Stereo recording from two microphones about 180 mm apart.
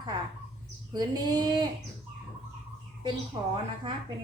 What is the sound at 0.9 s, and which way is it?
Speech, 20° right (ahead or behind).